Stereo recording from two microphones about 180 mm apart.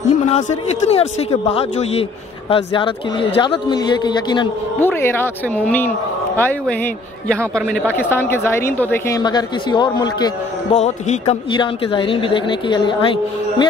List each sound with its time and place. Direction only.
0.3 s a man's voice: 35° left (ahead or behind)
4.7 s a man's voice: 10° left (ahead or behind)
9.2 s a woman's voice: 25° left (ahead or behind)
10.7 s a man's voice: 35° left (ahead or behind)